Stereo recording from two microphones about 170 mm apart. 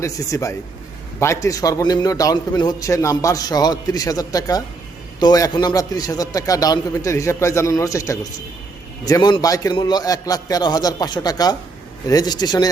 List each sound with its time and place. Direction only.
0.0 s a man's voice: 20° left (ahead or behind)